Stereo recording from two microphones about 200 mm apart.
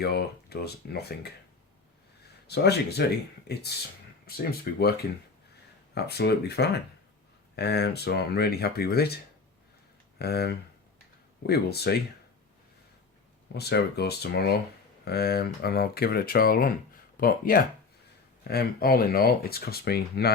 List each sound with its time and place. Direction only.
0.0 s speech: 55° left (ahead or behind)
2.5 s speech: 55° left (ahead or behind)
10.2 s speech: 55° left (ahead or behind)
13.5 s speech: 55° left (ahead or behind)